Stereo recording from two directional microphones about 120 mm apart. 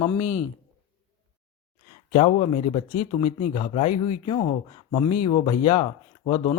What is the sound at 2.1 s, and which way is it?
A man's voice, 55° left (ahead or behind).